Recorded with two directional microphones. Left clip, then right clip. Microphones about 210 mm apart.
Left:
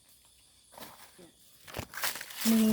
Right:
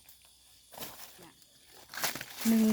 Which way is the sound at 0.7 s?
45° right (ahead or behind).